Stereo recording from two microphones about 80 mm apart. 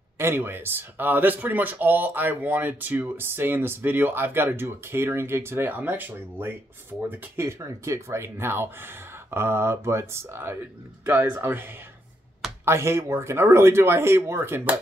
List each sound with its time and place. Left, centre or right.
0.2 s speech: right
7.4 s speech: right